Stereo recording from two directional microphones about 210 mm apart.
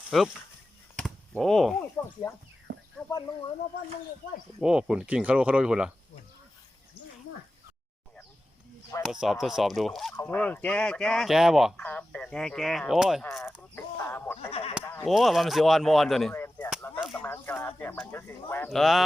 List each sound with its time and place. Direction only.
0.1 s speech: centre (ahead or behind)
2.7 s a sound: 55° right (ahead or behind)
4.6 s speech: 5° right (ahead or behind)
9.0 s speech: centre (ahead or behind)
13.4 s speech: 10° left (ahead or behind)
14.5 s speech: 25° left (ahead or behind)
15.0 s speech: centre (ahead or behind)
16.3 s chop: 10° left (ahead or behind)
16.9 s speech: 10° left (ahead or behind)